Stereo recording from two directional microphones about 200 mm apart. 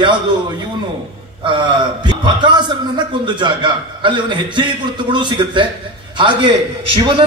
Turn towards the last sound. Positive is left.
turn(degrees=-25)  # may be behind; listen again after turning